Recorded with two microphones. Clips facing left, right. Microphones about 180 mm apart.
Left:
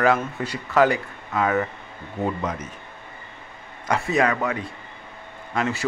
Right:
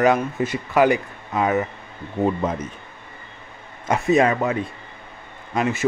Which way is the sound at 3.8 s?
20° right (ahead or behind).